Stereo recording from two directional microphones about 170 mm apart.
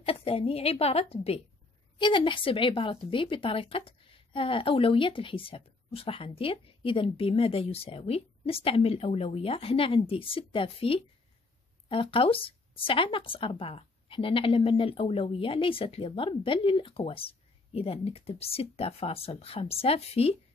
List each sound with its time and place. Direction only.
0.0 s a woman's voice: 35° left (ahead or behind)